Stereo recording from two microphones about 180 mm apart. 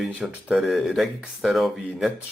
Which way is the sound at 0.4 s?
Centre (ahead or behind).